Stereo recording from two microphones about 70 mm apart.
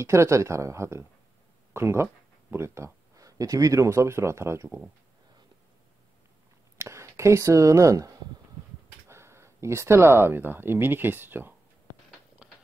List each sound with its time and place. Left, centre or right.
0.0 s speech: right
3.2 s speech: right
6.8 s speech: right
9.1 s speech: right
12.4 s a sound: centre